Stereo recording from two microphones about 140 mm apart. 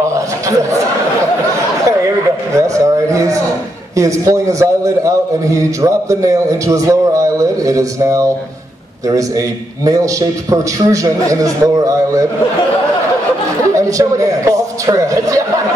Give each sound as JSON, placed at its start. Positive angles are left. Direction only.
{"t": 0.1, "sound": "a sound", "side_deg": -20}
{"t": 2.5, "sound": "a man's voice", "side_deg": -20}
{"t": 10.5, "sound": "a man's voice", "side_deg": -25}
{"t": 13.7, "sound": "a man's voice", "side_deg": -20}